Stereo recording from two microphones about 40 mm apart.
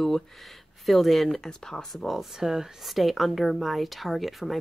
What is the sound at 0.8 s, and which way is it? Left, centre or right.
Speech, centre.